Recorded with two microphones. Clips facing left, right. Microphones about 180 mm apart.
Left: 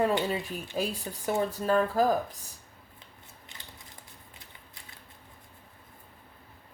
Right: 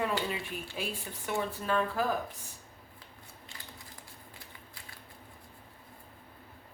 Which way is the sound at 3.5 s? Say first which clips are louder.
Even; 20° left (ahead or behind).